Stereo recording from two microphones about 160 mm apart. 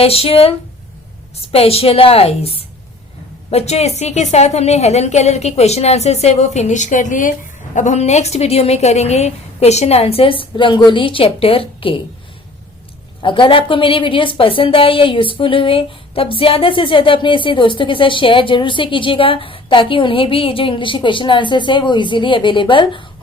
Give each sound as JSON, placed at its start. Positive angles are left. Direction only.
{"t": 0.0, "sound": "a woman's voice", "side_deg": 35}
{"t": 1.5, "sound": "a woman's voice", "side_deg": 35}
{"t": 13.2, "sound": "a woman's voice", "side_deg": 30}